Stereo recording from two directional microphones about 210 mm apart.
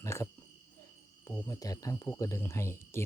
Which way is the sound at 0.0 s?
15° left (ahead or behind).